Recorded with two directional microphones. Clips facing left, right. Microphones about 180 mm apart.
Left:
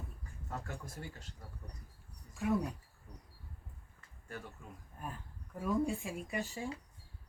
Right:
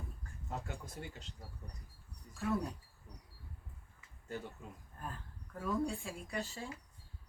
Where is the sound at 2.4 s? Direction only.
15° left (ahead or behind).